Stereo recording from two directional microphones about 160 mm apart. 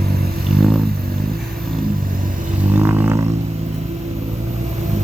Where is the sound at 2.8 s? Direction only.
15° right (ahead or behind).